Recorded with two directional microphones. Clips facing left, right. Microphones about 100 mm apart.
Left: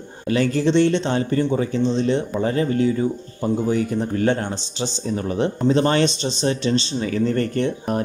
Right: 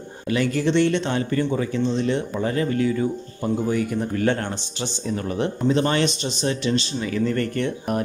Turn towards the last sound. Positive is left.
turn(degrees=30)  # may be behind; listen again after turning